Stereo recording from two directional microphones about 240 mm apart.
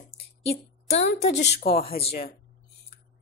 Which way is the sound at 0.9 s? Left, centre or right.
Left.